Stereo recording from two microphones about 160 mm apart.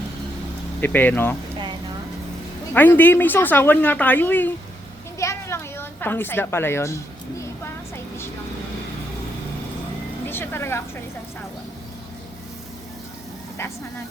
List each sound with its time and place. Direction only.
0.8 s speech: 10° left (ahead or behind)
2.7 s speech: 10° left (ahead or behind)
5.2 s a sound: 20° left (ahead or behind)
10.2 s speech: 15° left (ahead or behind)